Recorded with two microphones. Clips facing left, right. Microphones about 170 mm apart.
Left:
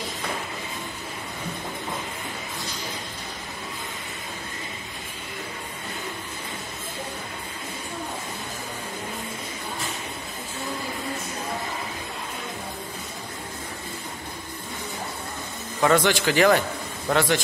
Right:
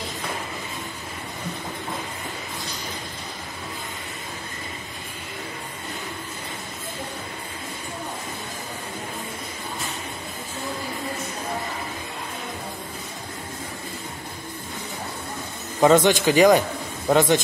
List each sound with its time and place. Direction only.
15.8 s speech: 20° right (ahead or behind)